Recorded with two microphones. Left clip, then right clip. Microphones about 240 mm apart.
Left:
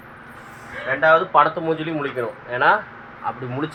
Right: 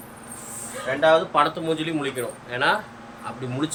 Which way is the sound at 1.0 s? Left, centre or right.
Centre.